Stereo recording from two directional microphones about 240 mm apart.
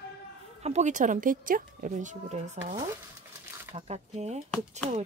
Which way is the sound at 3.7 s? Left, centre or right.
Right.